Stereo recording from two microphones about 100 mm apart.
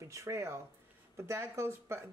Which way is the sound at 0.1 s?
30° right (ahead or behind).